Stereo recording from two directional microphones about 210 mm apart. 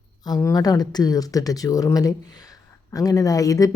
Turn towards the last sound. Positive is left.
turn(degrees=15)  # may be behind; listen again after turning